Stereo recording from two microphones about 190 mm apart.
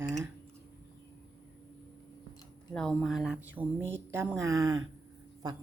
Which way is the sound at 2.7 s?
5° left (ahead or behind).